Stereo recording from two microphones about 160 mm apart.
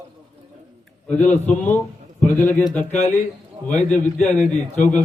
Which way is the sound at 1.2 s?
10° left (ahead or behind).